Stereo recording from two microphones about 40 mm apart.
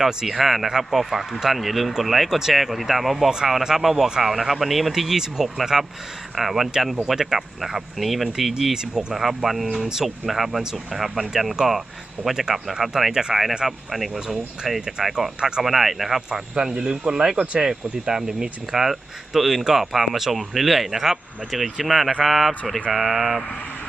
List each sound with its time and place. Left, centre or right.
0.1 s speech: centre
8.7 s speech: centre
9.1 s speech: centre
14.1 s speech: centre
15.6 s speech: centre
16.7 s speech: right
17.3 s speech: right
17.6 s speech: centre